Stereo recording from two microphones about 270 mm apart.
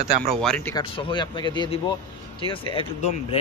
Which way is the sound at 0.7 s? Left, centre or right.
Centre.